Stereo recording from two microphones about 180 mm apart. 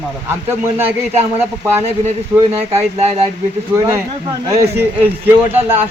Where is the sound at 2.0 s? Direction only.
35° right (ahead or behind).